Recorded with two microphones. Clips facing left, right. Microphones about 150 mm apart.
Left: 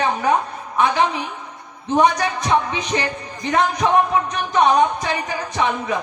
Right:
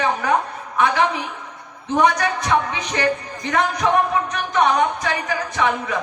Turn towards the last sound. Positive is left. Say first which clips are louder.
# even
turn(degrees=20)  # may be behind; listen again after turning